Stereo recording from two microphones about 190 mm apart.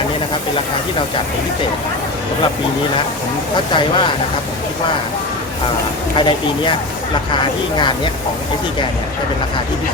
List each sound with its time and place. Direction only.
3.7 s speech: 25° left (ahead or behind)
6.1 s speech: 25° left (ahead or behind)